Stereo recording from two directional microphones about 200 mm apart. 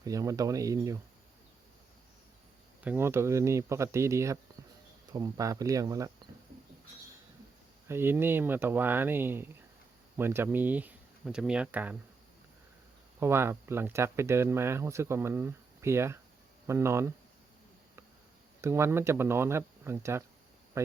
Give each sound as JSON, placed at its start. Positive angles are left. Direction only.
{"t": 0.0, "sound": "speech", "side_deg": -15}
{"t": 2.8, "sound": "speech", "side_deg": -10}
{"t": 7.9, "sound": "speech", "side_deg": -10}
{"t": 13.1, "sound": "speech", "side_deg": -10}
{"t": 18.6, "sound": "speech", "side_deg": -10}